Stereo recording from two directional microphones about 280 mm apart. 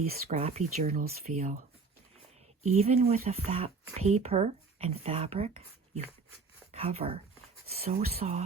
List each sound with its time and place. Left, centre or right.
0.0 s speech: right
2.7 s speech: right